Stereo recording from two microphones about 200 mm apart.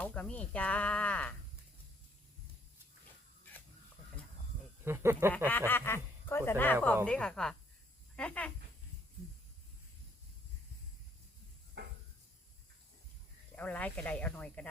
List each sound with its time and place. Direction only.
0.0 s speech: 5° left (ahead or behind)
4.9 s speech: 15° right (ahead or behind)
5.5 s a woman's voice: 10° left (ahead or behind)
11.8 s a sound: 60° right (ahead or behind)
13.6 s speech: 5° left (ahead or behind)